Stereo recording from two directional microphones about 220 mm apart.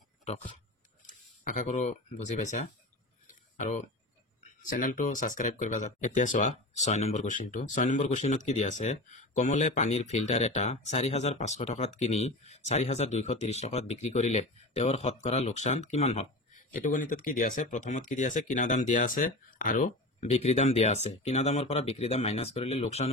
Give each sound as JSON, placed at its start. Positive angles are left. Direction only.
{"t": 1.0, "sound": "speech", "side_deg": 35}
{"t": 3.3, "sound": "a sound", "side_deg": 35}
{"t": 4.6, "sound": "speech", "side_deg": 35}